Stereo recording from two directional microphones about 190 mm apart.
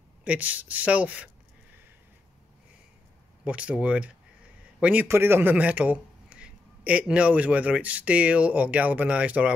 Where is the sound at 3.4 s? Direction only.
5° right (ahead or behind).